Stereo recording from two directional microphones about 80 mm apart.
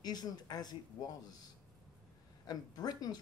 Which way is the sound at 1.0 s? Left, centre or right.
Left.